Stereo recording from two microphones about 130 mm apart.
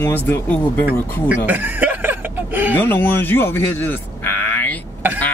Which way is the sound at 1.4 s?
15° right (ahead or behind).